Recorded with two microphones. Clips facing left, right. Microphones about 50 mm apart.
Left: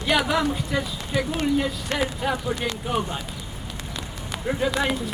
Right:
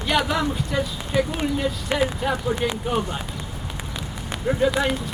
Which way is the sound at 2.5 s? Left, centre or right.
Centre.